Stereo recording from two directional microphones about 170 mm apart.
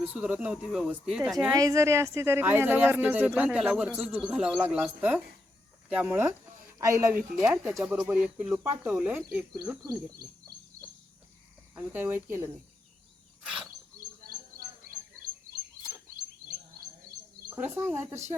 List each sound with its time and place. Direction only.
0.0 s speech: 10° right (ahead or behind)
1.5 s speech: 20° right (ahead or behind)
7.6 s speech: 5° right (ahead or behind)
11.7 s speech: 15° right (ahead or behind)
13.4 s a sound: 5° right (ahead or behind)
17.5 s speech: 15° right (ahead or behind)